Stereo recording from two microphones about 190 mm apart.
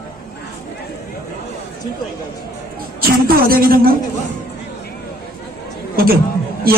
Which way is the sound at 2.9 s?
50° right (ahead or behind).